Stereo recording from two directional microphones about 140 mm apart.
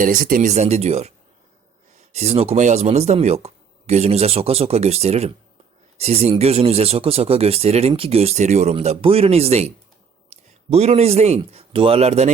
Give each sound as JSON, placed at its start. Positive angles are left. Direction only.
{"t": 0.0, "sound": "a man's voice", "side_deg": -85}